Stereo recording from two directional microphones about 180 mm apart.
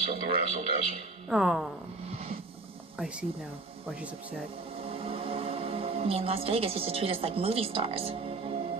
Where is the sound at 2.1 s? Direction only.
30° right (ahead or behind).